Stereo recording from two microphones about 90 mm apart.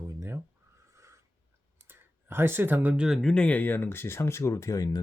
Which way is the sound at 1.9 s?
25° right (ahead or behind).